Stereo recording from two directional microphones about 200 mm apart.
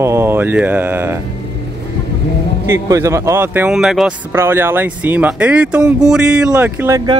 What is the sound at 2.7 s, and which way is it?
Speech, 15° right (ahead or behind).